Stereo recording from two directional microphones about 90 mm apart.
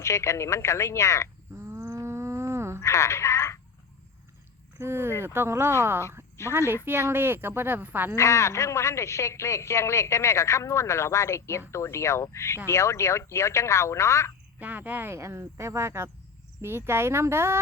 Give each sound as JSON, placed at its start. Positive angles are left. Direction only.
{"t": 0.0, "sound": "a man's voice", "side_deg": 30}
{"t": 1.5, "sound": "wild animals", "side_deg": -25}
{"t": 2.8, "sound": "telephone", "side_deg": 30}
{"t": 4.8, "sound": "speech", "side_deg": -25}
{"t": 6.4, "sound": "a man's voice", "side_deg": 30}
{"t": 6.8, "sound": "speech", "side_deg": -25}
{"t": 8.1, "sound": "a man's voice", "side_deg": 35}
{"t": 14.6, "sound": "speech", "side_deg": -20}